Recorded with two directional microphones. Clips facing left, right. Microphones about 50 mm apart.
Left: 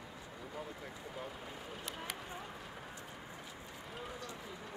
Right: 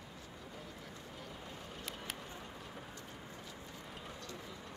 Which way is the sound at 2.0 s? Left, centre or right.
Centre.